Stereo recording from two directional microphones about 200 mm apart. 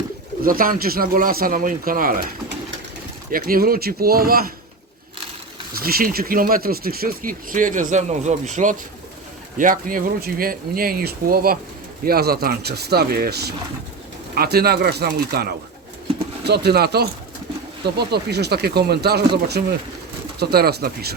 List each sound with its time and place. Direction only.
0.4 s speech: 45° right (ahead or behind)
5.8 s speech: 45° right (ahead or behind)